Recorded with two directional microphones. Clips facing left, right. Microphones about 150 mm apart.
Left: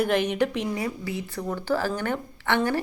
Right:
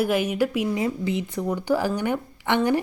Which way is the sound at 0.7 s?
20° right (ahead or behind).